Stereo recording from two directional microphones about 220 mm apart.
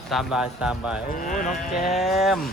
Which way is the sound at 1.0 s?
40° left (ahead or behind).